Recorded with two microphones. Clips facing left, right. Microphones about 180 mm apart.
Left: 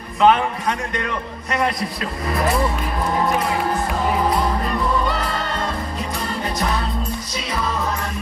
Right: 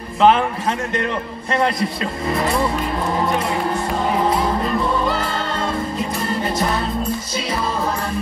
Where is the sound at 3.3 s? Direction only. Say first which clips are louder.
Even; centre (ahead or behind).